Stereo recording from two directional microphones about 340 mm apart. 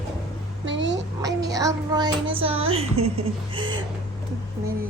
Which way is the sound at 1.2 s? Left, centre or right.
Centre.